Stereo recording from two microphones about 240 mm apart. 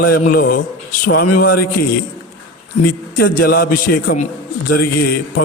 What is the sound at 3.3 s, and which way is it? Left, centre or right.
Speech, left.